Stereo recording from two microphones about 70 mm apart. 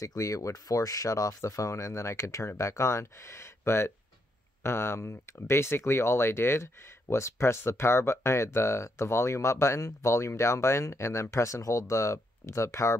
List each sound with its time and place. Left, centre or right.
0.0 s speech: left